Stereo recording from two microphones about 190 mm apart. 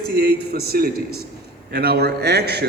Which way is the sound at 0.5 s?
55° right (ahead or behind).